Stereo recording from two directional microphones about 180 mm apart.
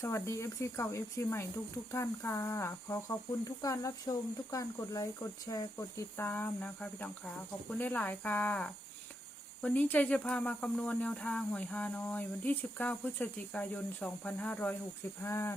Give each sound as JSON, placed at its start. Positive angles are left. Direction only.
{"t": 0.0, "sound": "speech", "side_deg": 15}